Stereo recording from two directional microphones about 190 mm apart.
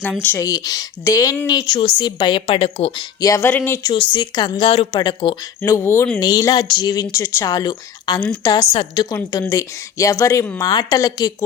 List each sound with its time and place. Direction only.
0.2 s speech: 15° left (ahead or behind); by 3.0 s 30° left (ahead or behind)
3.2 s a woman's voice: 15° left (ahead or behind)
3.9 s speech: 25° left (ahead or behind)
5.7 s a woman's voice: 15° left (ahead or behind)